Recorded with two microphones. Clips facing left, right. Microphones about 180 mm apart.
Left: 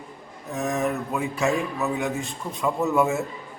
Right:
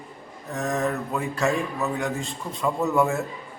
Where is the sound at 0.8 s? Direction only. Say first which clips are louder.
Even; 15° left (ahead or behind).